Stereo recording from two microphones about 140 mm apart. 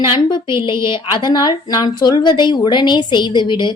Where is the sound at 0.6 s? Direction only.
35° left (ahead or behind).